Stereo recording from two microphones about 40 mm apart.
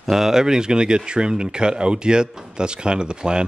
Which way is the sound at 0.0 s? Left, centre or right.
Centre.